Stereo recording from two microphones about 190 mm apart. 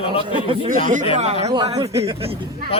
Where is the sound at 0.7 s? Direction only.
45° right (ahead or behind).